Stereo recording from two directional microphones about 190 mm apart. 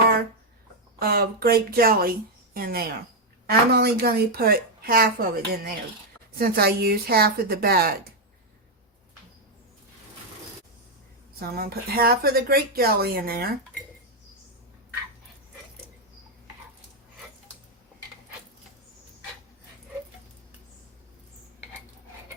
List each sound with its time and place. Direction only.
0.9 s a woman's voice: 55° right (ahead or behind)
11.3 s speech: 55° right (ahead or behind)